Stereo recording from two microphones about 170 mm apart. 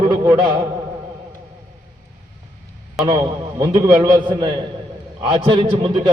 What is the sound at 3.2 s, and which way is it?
A man's voice, 20° right (ahead or behind).